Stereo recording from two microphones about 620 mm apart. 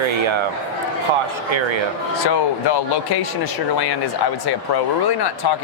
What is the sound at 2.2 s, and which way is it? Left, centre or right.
Speech, left.